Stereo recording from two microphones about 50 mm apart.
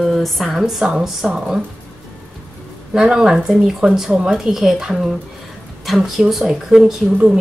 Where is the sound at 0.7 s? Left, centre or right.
Centre.